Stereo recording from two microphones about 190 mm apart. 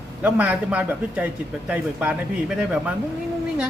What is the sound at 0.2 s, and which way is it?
A man's voice, 10° right (ahead or behind).